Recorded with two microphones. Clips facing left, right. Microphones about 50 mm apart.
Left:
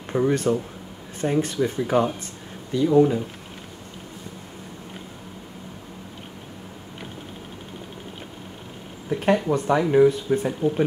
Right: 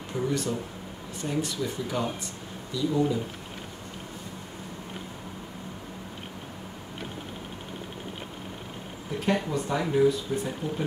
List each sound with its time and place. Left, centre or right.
0.1 s speech: left
9.2 s speech: left